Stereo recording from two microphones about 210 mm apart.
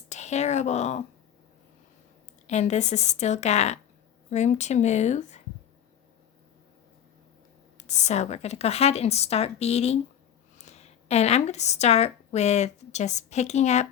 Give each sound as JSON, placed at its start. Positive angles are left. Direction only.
{"t": 0.1, "sound": "speech", "side_deg": 35}
{"t": 2.5, "sound": "a woman's voice", "side_deg": 30}
{"t": 7.8, "sound": "a woman's voice", "side_deg": 35}